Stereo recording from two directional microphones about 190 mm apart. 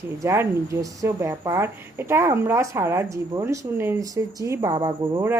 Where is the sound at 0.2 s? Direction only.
15° right (ahead or behind).